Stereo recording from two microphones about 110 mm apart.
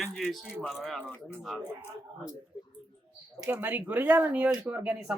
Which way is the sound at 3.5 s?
15° right (ahead or behind).